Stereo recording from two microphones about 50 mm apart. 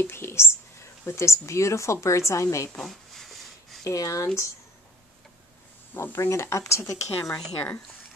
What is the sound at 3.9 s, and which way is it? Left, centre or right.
Speech, left.